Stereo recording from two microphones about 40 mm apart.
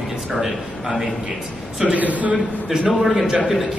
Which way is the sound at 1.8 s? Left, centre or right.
Right.